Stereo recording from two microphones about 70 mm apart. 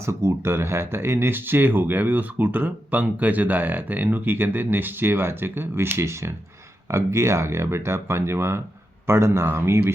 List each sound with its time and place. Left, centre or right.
0.0 s speech: right